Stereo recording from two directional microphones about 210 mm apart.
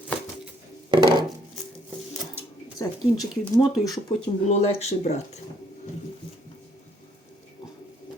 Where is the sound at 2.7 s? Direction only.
15° left (ahead or behind).